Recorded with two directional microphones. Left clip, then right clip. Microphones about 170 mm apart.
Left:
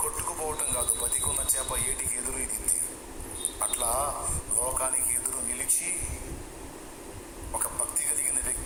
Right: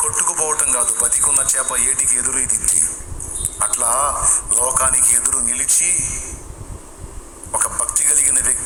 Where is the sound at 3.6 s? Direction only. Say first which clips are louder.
Right 10 dB; 50° right (ahead or behind).